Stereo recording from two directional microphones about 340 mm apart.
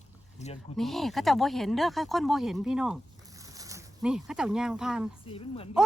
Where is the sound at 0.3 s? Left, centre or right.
Centre.